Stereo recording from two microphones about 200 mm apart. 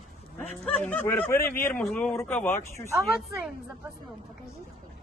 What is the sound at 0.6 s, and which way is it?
Speech, 5° left (ahead or behind).